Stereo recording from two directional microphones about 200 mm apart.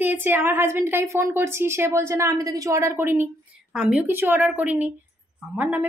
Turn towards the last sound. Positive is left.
turn(degrees=-10)  # may be behind; listen again after turning